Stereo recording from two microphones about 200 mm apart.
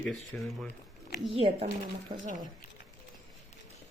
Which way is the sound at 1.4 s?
25° right (ahead or behind).